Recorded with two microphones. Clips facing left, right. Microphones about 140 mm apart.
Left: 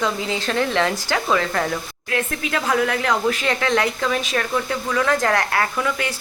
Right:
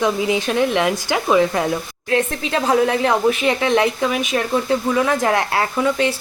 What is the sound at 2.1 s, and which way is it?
Speech, 25° right (ahead or behind).